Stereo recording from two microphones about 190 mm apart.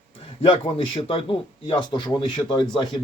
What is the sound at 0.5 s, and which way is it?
Speech, 25° left (ahead or behind).